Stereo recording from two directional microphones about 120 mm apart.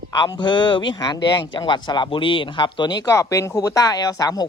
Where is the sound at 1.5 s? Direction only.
40° left (ahead or behind).